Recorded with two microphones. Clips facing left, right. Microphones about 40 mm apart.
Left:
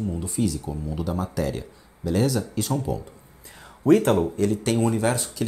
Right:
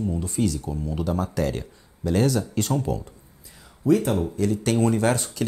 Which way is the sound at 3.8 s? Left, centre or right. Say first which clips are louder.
Left 3 dB; left.